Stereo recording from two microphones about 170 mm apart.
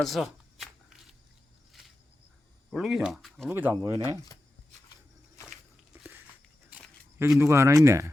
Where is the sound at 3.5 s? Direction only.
10° right (ahead or behind).